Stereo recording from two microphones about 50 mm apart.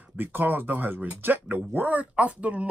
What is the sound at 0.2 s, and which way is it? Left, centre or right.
Speech, right.